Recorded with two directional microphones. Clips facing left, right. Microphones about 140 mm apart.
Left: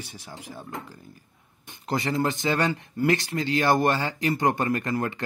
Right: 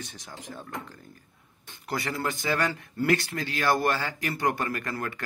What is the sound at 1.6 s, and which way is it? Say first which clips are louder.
Speech: left 4 dB; 20° left (ahead or behind).